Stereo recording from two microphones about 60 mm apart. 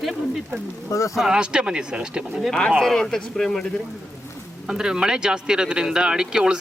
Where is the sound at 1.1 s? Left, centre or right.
Centre.